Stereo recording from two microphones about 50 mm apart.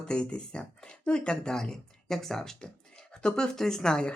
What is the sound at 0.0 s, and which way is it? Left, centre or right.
Speech, centre.